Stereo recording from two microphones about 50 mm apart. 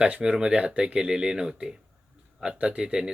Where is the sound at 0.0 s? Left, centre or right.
Right.